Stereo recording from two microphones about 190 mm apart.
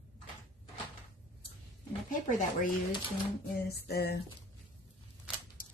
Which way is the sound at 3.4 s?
55° left (ahead or behind).